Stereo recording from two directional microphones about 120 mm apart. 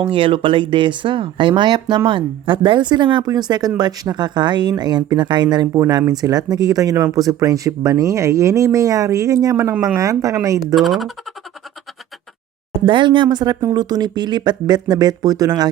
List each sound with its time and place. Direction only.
0.0 s speech: 45° right (ahead or behind); by 10.8 s 25° right (ahead or behind)
10.8 s speech: centre (ahead or behind)
12.8 s speech: 40° right (ahead or behind)